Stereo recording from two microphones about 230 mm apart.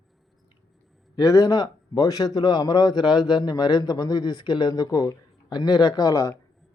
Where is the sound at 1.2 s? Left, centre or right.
Centre.